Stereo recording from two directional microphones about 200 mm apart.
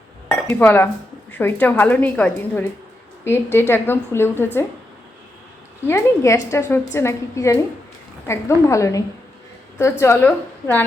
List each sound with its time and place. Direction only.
0.3 s a woman's voice: 5° left (ahead or behind)
5.9 s a woman's voice: 15° left (ahead or behind)